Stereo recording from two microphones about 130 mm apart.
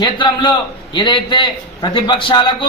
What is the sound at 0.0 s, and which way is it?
Speech, 35° left (ahead or behind).